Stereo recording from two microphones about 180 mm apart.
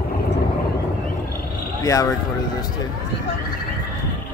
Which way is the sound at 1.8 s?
20° left (ahead or behind).